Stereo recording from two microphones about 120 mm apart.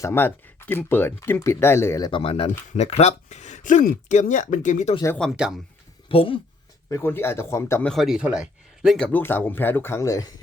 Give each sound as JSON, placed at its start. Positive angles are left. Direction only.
{"t": 0.0, "sound": "speech", "side_deg": 20}
{"t": 2.0, "sound": "speech", "side_deg": 45}
{"t": 5.2, "sound": "speech", "side_deg": 5}
{"t": 6.1, "sound": "speech", "side_deg": 50}
{"t": 6.9, "sound": "speech", "side_deg": 20}
{"t": 7.8, "sound": "speech", "side_deg": 5}
{"t": 8.0, "sound": "speech", "side_deg": -5}
{"t": 9.1, "sound": "speech", "side_deg": 15}